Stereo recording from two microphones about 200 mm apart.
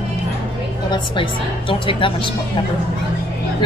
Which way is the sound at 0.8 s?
25° left (ahead or behind).